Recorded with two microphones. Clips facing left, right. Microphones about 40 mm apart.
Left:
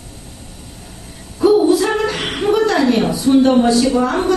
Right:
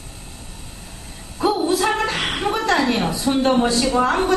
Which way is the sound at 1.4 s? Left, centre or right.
Centre.